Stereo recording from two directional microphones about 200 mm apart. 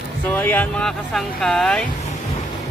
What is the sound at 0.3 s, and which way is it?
Speech, 10° left (ahead or behind).